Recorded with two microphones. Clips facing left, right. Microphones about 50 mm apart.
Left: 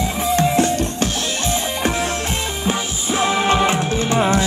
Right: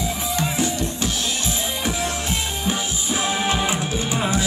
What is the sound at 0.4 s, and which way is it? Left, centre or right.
Music, left.